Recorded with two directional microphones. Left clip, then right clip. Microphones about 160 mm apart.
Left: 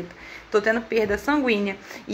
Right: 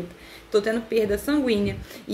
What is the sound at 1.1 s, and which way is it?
Speech, 25° right (ahead or behind).